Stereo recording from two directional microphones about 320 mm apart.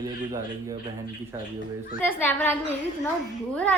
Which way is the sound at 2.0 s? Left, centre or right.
Centre.